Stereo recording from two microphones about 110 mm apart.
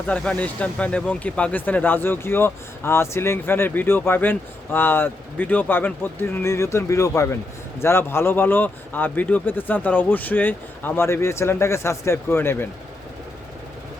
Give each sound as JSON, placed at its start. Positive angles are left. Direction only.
{"t": 0.1, "sound": "speech", "side_deg": 15}